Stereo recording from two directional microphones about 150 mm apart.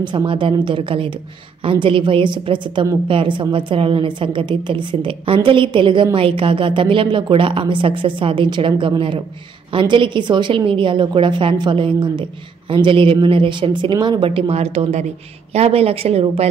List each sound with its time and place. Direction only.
0.0 s a woman's voice: 30° right (ahead or behind)